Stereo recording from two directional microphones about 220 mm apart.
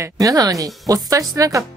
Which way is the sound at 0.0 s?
15° right (ahead or behind).